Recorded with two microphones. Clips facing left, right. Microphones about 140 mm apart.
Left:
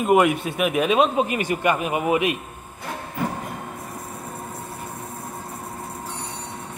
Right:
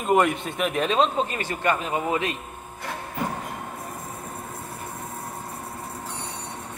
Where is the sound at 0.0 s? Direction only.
10° left (ahead or behind).